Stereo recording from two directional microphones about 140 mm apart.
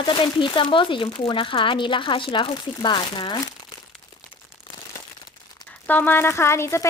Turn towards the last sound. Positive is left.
turn(degrees=20)  # may be behind; listen again after turning